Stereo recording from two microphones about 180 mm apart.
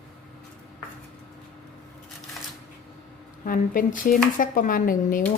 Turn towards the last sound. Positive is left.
turn(degrees=50)  # may be behind; listen again after turning